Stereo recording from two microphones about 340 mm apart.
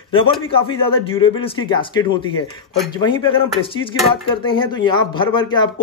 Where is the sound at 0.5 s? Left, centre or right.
Centre.